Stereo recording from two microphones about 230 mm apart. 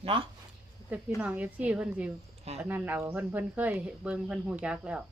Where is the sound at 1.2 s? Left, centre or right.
Centre.